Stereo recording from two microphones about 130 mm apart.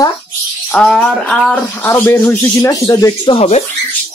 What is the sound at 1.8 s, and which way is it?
A man's voice, 20° left (ahead or behind).